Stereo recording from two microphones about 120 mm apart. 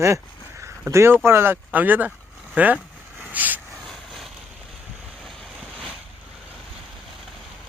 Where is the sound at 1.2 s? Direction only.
20° right (ahead or behind).